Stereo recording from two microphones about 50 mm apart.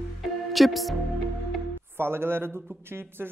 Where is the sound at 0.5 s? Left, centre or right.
Centre.